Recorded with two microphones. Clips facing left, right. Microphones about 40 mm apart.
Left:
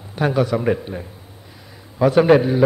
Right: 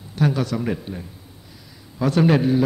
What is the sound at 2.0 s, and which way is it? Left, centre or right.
Speech, centre.